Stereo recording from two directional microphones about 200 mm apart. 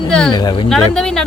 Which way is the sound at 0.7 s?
Centre (ahead or behind).